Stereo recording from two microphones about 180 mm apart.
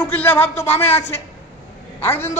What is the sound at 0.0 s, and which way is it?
A man's voice, 10° left (ahead or behind).